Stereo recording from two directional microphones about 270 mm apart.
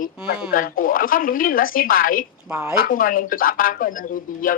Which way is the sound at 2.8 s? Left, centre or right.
Left.